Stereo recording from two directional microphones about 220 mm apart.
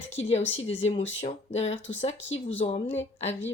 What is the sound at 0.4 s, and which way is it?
Speech, 60° left (ahead or behind).